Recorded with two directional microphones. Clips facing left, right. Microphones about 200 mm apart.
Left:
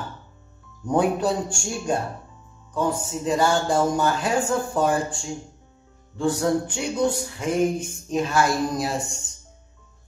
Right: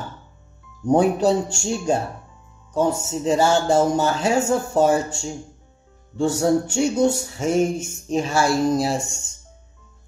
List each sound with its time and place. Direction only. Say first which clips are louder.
0.9 s speech: right 4 dB; 25° right (ahead or behind)
3.0 s speech: right 3 dB; 25° right (ahead or behind)
6.7 s speech: right 5 dB; 45° right (ahead or behind)
7.1 s speech: right 4 dB; 25° right (ahead or behind)